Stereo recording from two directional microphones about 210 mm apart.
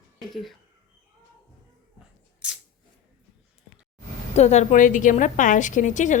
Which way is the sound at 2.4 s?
5° right (ahead or behind).